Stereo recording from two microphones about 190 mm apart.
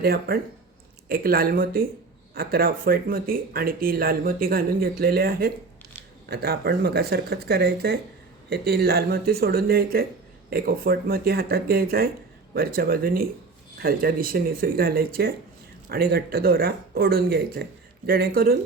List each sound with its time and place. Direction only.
0.0 s speech: 50° right (ahead or behind)